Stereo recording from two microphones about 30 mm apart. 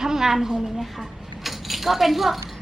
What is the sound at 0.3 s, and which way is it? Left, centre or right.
Speech, centre.